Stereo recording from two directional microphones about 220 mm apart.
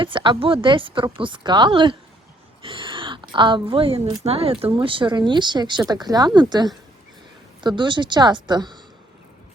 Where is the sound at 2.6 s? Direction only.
20° right (ahead or behind).